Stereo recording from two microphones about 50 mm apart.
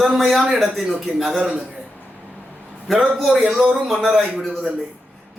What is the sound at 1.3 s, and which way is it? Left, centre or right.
Speech, centre.